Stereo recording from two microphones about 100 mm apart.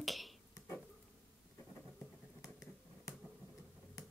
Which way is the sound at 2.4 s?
35° left (ahead or behind).